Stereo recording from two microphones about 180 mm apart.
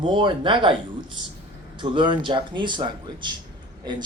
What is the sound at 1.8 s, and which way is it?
Speech, 25° right (ahead or behind).